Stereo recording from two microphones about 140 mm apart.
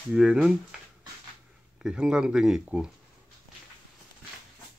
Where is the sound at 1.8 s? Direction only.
5° right (ahead or behind).